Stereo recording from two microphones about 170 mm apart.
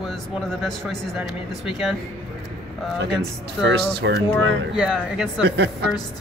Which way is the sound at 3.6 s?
85° right.